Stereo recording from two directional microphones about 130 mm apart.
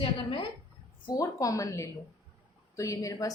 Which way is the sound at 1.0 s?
25° left (ahead or behind).